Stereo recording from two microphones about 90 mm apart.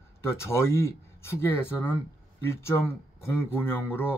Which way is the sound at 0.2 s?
30° left (ahead or behind).